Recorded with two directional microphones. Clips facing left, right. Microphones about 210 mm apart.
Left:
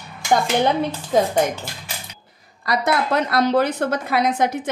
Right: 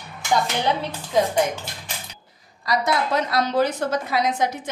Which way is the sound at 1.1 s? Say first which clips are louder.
Left 2 dB; 45° left (ahead or behind).